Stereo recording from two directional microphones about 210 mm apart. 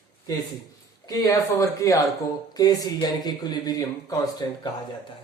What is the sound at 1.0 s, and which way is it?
A woman's voice, 15° left (ahead or behind).